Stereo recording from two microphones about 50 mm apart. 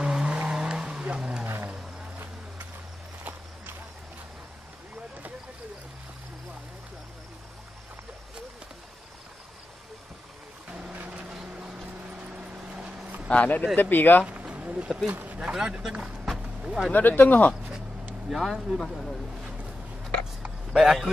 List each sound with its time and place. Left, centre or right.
0.0 s vehicle: centre
1.4 s vehicle: right
10.9 s vehicle: right
12.8 s a sound: centre
13.3 s speech: left
13.7 s speech: left
14.4 s a sound: right
15.0 s speech: right
15.4 s a sound: centre
16.9 s speech: left
18.3 s speech: centre
20.7 s speech: centre